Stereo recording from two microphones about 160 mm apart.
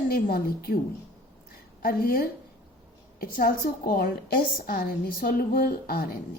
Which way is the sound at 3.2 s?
65° left (ahead or behind).